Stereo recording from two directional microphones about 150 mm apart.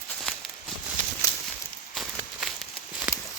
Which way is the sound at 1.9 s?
Centre (ahead or behind).